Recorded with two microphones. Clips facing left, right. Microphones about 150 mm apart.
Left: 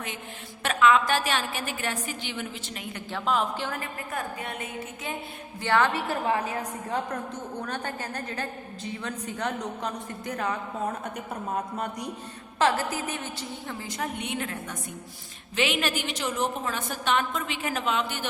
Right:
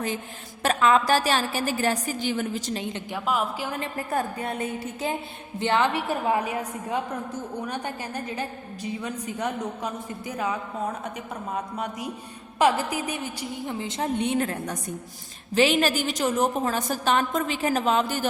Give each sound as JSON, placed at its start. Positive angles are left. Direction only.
{"t": 0.6, "sound": "a woman's voice", "side_deg": -35}
{"t": 2.8, "sound": "a woman's voice", "side_deg": -20}
{"t": 3.2, "sound": "a woman's voice", "side_deg": -10}
{"t": 3.8, "sound": "a woman's voice", "side_deg": -35}
{"t": 5.5, "sound": "a woman's voice", "side_deg": -20}
{"t": 12.5, "sound": "a woman's voice", "side_deg": -10}